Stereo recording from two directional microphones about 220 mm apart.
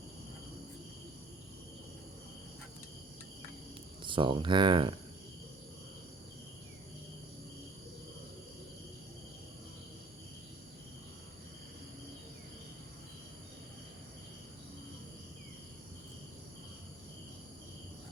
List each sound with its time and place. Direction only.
4.0 s speech: 20° right (ahead or behind)